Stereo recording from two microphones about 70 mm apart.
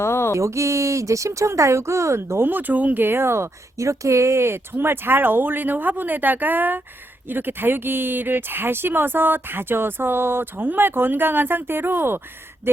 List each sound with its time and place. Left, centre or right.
0.0 s a sound: left
0.3 s speech: right
2.5 s speech: right